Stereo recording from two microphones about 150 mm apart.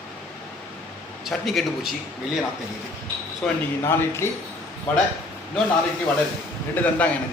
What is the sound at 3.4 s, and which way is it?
Speech, 15° left (ahead or behind).